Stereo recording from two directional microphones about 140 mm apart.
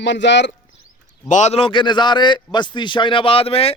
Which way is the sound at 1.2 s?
60° left (ahead or behind).